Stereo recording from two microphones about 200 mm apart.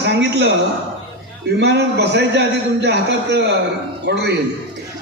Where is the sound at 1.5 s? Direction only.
55° right (ahead or behind).